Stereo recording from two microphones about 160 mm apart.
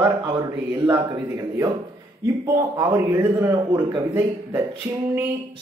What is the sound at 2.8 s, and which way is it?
A man's voice, 20° right (ahead or behind).